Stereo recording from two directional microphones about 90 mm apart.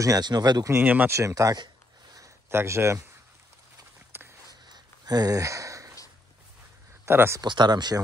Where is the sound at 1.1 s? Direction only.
40° right (ahead or behind).